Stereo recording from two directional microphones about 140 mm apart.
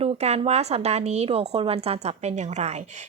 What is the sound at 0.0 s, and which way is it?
A woman's voice, 50° right (ahead or behind).